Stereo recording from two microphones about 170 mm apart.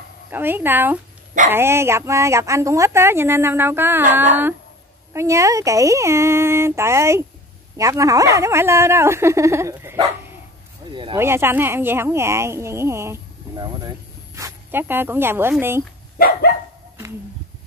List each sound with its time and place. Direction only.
0.3 s a woman's voice: 10° right (ahead or behind)
5.1 s a woman's voice: 15° right (ahead or behind)
10.9 s speech: 30° right (ahead or behind)
11.1 s speech: 15° right (ahead or behind)
16.2 s dog: 70° left (ahead or behind)